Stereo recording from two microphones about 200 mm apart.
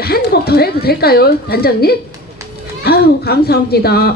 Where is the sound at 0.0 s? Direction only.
50° left (ahead or behind).